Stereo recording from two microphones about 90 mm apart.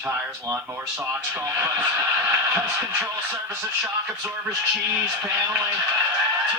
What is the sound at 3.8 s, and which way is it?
A man's voice, 5° right (ahead or behind).